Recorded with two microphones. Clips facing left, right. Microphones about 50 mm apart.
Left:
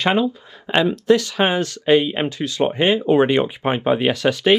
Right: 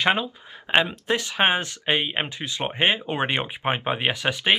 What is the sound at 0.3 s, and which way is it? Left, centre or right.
Speech, right.